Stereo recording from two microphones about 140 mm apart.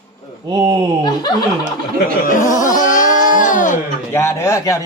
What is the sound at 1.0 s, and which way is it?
Snicker, 30° left (ahead or behind).